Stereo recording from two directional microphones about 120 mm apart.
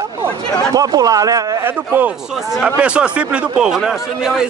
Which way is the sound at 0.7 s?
30° right (ahead or behind).